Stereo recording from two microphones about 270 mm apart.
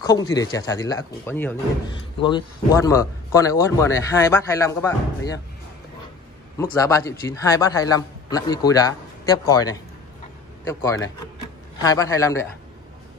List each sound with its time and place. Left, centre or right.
0.0 s a man's voice: centre
6.6 s a man's voice: centre